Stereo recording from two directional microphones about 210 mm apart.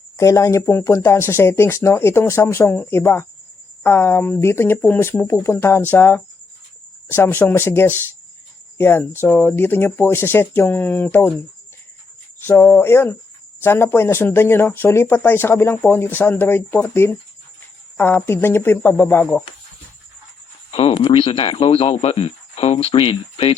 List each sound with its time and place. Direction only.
0.2 s speech: 15° left (ahead or behind)
12.4 s speech: 10° left (ahead or behind)
20.7 s speech: 25° left (ahead or behind)